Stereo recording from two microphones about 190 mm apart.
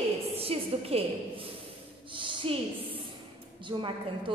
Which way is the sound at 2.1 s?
25° right (ahead or behind).